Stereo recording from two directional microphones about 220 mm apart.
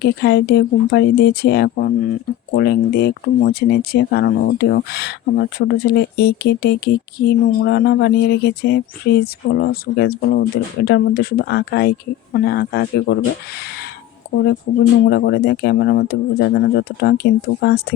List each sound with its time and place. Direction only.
0.0 s speech: 50° left (ahead or behind)
14.3 s a sound: 45° left (ahead or behind)
15.0 s speech: 50° left (ahead or behind)